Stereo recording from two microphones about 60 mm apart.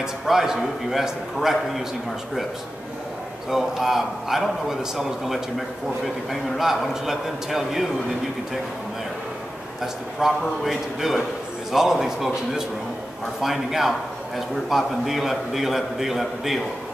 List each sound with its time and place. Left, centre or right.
0.0 s a man's voice: centre
3.4 s a man's voice: centre
6.6 s a man's voice: centre
10.2 s a man's voice: centre
13.4 s a man's voice: centre